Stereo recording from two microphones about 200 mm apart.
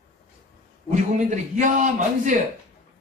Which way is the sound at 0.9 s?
40° right (ahead or behind).